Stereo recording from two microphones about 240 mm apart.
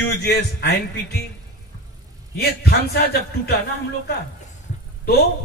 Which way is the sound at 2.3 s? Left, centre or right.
Left.